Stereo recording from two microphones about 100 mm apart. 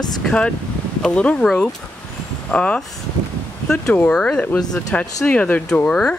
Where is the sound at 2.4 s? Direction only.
10° left (ahead or behind).